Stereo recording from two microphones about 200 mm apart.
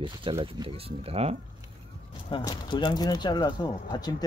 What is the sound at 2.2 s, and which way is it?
Speech, 25° left (ahead or behind).